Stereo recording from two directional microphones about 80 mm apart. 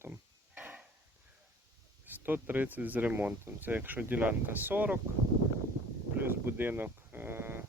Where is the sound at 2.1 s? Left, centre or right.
Right.